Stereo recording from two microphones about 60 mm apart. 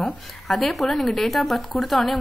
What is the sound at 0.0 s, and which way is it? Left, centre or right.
A woman's voice, centre.